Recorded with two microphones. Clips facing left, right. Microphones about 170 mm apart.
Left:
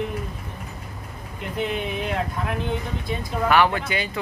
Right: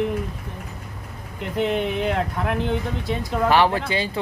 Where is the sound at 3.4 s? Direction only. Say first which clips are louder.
Right 1 dB; 30° right (ahead or behind).